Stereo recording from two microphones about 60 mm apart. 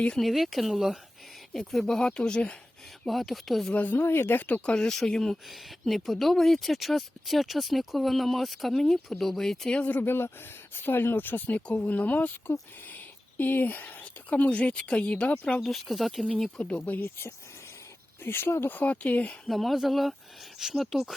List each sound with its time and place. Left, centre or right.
0.2 s speech: centre
3.1 s speech: centre
3.7 s speech: left
4.0 s speech: left
4.4 s speech: left
4.7 s speech: centre
9.7 s speech: left
10.0 s speech: left
13.4 s speech: left
15.6 s speech: centre
16.7 s speech: left
17.0 s speech: left
18.8 s speech: left
19.5 s speech: centre